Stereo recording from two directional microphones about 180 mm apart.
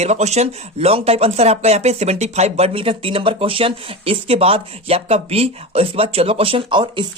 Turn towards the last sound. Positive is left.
turn(degrees=-25)  # may be behind; listen again after turning